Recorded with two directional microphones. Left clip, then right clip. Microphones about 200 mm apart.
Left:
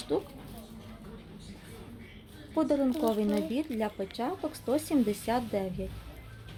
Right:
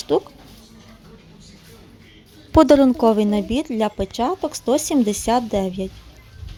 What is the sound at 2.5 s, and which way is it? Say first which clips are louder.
A woman's voice: right 15 dB; 50° right (ahead or behind).